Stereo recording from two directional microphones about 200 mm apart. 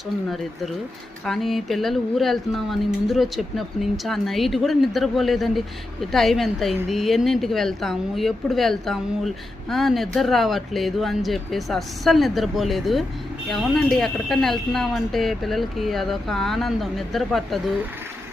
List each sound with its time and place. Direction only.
1.2 s speech: centre (ahead or behind)